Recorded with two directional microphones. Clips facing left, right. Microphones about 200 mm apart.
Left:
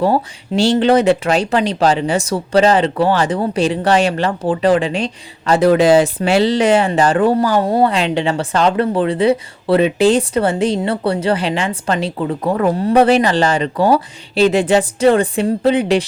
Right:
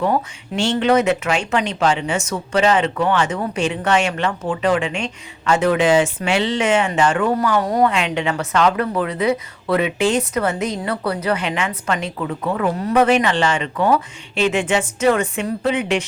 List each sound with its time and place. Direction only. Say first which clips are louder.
0.0 s speech: left 4 dB; 35° left (ahead or behind)